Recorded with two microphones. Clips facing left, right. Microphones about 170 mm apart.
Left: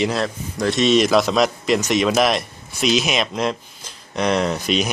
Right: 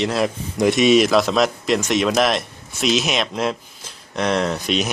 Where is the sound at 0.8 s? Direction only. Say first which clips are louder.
Even; centre (ahead or behind).